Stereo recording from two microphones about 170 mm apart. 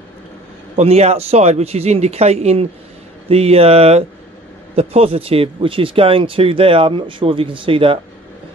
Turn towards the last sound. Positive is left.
turn(degrees=-30)  # may be behind; listen again after turning